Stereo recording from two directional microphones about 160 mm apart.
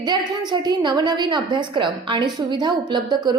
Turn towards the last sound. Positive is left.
turn(degrees=-25)  # may be behind; listen again after turning